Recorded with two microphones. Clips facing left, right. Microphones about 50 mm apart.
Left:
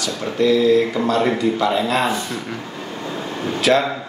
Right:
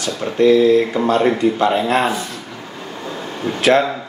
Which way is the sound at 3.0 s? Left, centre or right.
Centre.